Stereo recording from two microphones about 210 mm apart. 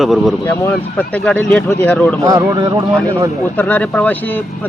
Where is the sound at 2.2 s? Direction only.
15° right (ahead or behind).